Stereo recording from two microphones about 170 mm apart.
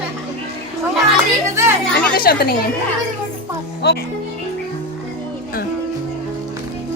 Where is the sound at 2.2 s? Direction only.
60° left (ahead or behind).